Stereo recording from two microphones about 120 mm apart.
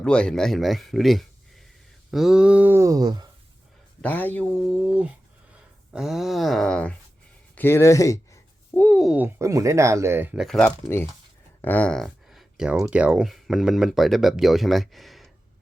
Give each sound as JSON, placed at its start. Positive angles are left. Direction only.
{"t": 0.0, "sound": "speech", "side_deg": 5}
{"t": 2.0, "sound": "a sound", "side_deg": -5}
{"t": 4.0, "sound": "speech", "side_deg": 15}
{"t": 4.6, "sound": "speech", "side_deg": 0}
{"t": 8.7, "sound": "speech", "side_deg": 10}
{"t": 9.4, "sound": "speech", "side_deg": -25}
{"t": 10.3, "sound": "speech", "side_deg": 0}
{"t": 10.7, "sound": "speech", "side_deg": 20}